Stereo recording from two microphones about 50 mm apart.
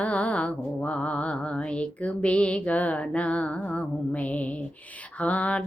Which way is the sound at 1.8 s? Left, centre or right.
Left.